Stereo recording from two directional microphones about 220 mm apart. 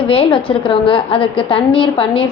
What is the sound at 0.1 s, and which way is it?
A woman's voice, 25° left (ahead or behind).